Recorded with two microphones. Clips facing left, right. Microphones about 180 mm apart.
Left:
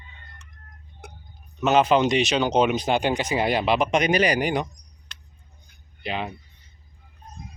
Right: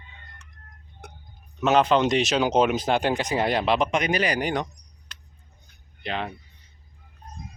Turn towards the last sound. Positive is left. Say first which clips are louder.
# left 1 dB
turn(degrees=5)  # may be behind; listen again after turning